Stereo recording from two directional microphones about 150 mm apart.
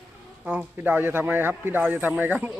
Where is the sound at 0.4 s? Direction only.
10° right (ahead or behind).